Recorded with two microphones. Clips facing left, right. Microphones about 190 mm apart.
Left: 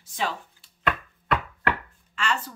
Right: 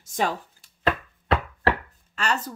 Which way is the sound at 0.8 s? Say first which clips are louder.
Right 3 dB; 30° right (ahead or behind).